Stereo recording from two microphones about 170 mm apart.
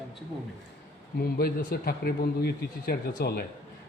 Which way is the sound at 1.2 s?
65° left (ahead or behind).